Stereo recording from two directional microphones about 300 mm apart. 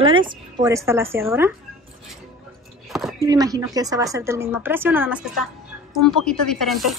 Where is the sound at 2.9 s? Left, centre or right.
Centre.